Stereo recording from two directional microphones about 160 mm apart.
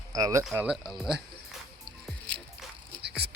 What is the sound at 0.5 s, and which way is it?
Speech, 5° right (ahead or behind).